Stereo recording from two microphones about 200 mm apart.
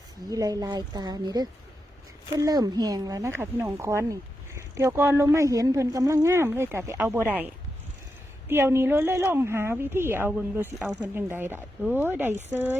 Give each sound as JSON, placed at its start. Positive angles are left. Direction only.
{"t": 0.3, "sound": "a woman's voice", "side_deg": -15}